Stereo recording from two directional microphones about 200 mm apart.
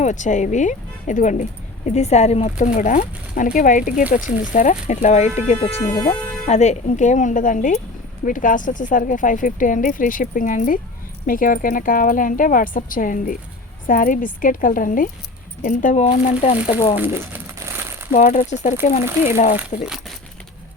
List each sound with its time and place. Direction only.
0.0 s speech: 35° left (ahead or behind)
16.9 s speech: 10° right (ahead or behind)
18.1 s speech: 40° left (ahead or behind)
19.0 s speech: 10° right (ahead or behind)